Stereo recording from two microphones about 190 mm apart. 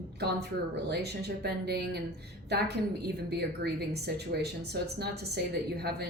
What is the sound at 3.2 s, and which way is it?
Speech, 60° right (ahead or behind).